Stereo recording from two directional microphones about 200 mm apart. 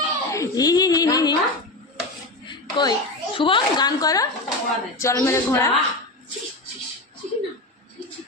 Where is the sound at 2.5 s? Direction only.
20° left (ahead or behind).